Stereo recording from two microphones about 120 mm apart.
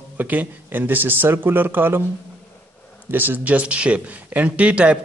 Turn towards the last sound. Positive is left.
turn(degrees=-10)  # may be behind; listen again after turning